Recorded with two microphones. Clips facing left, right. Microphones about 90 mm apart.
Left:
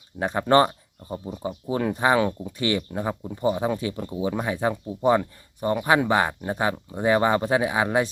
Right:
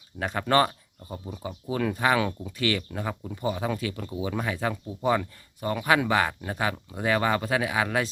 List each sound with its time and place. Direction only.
0.2 s speech: 20° left (ahead or behind)